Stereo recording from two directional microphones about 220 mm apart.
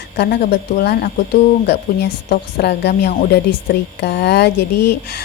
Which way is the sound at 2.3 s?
45° left (ahead or behind).